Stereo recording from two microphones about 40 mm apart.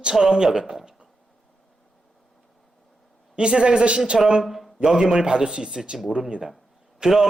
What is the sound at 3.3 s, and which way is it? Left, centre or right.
Speech, right.